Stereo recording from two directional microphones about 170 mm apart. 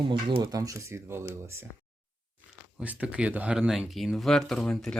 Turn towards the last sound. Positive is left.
turn(degrees=5)  # may be behind; listen again after turning